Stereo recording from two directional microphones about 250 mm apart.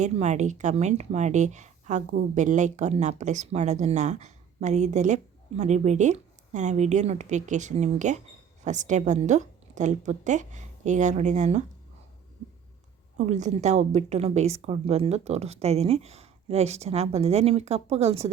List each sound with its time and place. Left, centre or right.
0.0 s a woman's voice: right
13.1 s a woman's voice: right